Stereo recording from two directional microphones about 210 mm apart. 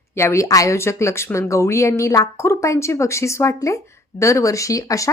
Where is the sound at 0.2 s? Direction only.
15° left (ahead or behind).